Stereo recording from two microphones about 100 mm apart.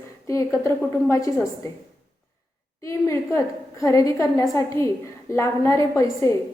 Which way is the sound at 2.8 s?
30° left (ahead or behind).